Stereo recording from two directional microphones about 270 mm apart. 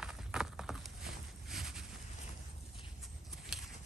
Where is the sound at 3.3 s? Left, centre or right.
Centre.